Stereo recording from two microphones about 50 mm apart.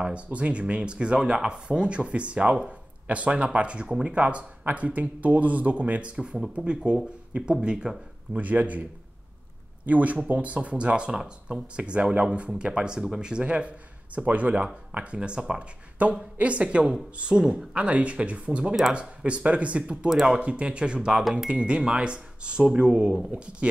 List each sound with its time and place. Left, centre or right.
0.0 s speech: right
8.3 s a man's voice: right
9.8 s a man's voice: right
20.1 s speech: centre
20.3 s speech: right
21.1 s speech: centre
21.5 s speech: right